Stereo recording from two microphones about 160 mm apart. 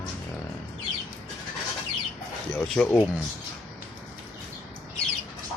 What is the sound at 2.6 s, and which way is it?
Speech, 5° left (ahead or behind).